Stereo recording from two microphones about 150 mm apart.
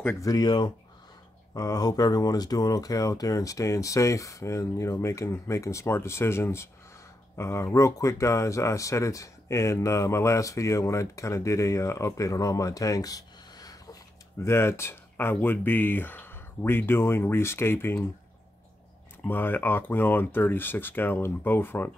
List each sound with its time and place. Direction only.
0.2 s speech: 25° left (ahead or behind)
19.2 s speech: 15° left (ahead or behind)